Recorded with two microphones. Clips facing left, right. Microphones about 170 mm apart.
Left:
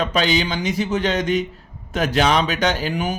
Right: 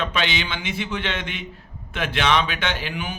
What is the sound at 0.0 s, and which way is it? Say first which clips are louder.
Speech: left 6 dB; 40° left (ahead or behind).